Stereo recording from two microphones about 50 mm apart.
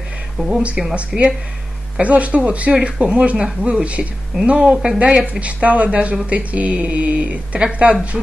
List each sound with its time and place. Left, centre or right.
0.4 s speech: centre
0.9 s speech: right